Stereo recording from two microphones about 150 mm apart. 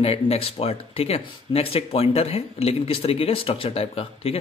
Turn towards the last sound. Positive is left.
turn(degrees=40)  # may be behind; listen again after turning